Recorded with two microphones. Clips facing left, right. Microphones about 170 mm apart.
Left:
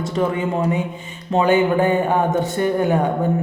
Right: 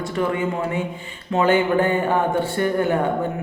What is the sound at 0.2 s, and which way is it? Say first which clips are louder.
Speech: left 2 dB; 20° left (ahead or behind).